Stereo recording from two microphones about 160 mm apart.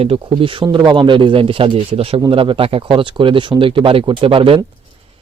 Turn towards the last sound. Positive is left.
turn(degrees=-35)  # may be behind; listen again after turning